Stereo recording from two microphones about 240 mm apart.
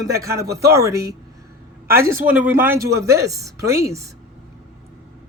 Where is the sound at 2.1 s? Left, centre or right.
Centre.